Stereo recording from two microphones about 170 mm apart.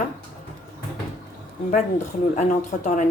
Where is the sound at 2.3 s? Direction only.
50° left (ahead or behind).